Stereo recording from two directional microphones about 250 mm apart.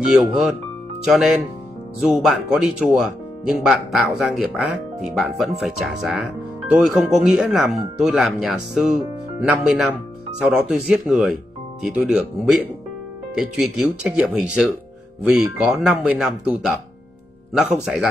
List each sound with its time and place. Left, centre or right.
0.0 s speech: centre
2.0 s speech: centre